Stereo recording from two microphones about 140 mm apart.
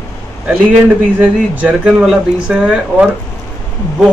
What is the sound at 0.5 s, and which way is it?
A man's voice, 10° right (ahead or behind).